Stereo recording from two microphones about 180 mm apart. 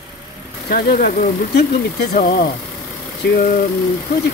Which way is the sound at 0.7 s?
55° left (ahead or behind).